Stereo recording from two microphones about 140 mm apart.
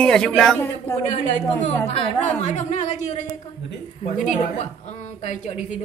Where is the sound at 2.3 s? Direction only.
55° left (ahead or behind).